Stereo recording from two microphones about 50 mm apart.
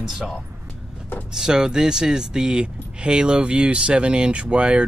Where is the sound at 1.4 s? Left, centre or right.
Centre.